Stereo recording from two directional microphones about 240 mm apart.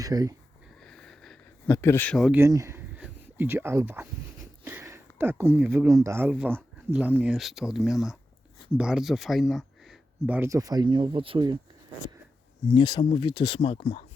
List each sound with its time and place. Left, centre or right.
0.0 s speech: centre
0.8 s a sound: centre
4.6 s speech: centre
12.7 s speech: centre